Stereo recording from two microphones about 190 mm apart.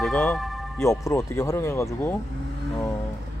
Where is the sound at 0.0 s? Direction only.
Centre (ahead or behind).